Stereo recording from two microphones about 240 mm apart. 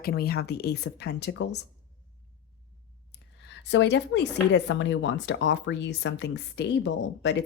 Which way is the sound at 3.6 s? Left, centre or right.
Left.